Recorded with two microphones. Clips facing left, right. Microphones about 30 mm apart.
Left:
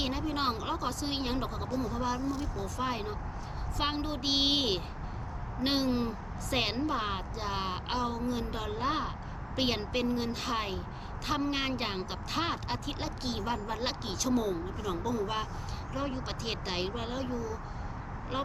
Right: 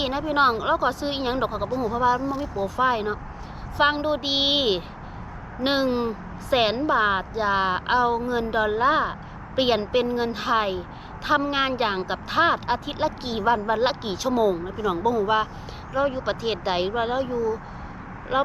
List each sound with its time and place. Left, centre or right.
0.0 s a woman's voice: right